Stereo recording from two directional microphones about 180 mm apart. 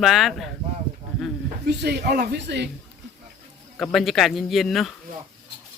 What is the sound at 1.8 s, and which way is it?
Speech, 65° right (ahead or behind).